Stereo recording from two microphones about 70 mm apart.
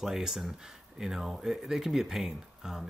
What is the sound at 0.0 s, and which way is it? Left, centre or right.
Speech, centre.